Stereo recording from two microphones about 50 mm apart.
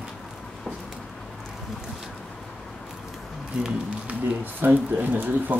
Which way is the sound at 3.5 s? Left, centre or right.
Right.